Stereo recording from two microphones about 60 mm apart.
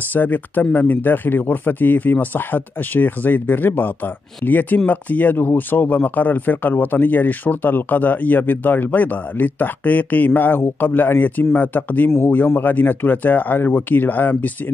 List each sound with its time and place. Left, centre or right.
0.1 s speech: left